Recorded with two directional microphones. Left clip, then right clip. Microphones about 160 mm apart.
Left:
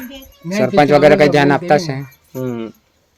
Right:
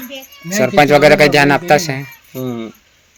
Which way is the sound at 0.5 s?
Centre (ahead or behind).